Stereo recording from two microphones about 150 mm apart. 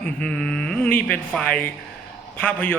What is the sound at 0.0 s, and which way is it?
Speech, 10° left (ahead or behind).